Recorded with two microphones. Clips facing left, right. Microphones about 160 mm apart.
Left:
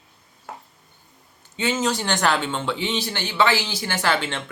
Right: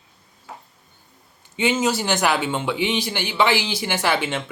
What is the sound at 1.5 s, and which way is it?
Speech, 15° right (ahead or behind).